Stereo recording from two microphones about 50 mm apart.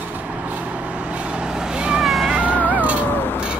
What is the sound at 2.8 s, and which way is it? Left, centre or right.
Cat, right.